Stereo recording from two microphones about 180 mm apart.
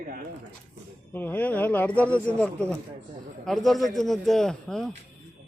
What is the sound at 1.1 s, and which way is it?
Speech, 10° left (ahead or behind).